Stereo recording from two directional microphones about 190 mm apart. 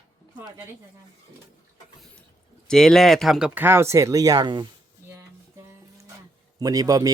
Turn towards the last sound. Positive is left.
turn(degrees=-20)  # may be behind; listen again after turning